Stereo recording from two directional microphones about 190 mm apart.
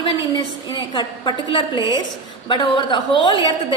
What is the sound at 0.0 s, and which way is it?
A woman's voice, 25° left (ahead or behind).